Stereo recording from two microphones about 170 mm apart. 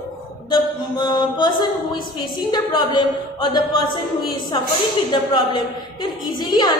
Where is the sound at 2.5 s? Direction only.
25° left (ahead or behind).